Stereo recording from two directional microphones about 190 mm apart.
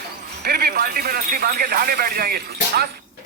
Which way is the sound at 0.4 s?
55° right (ahead or behind).